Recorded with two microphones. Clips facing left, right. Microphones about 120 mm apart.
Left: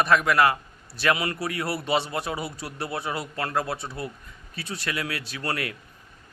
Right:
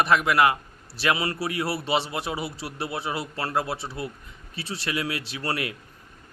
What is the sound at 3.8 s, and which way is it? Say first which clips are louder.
Speech: right 1 dB; 15° right (ahead or behind).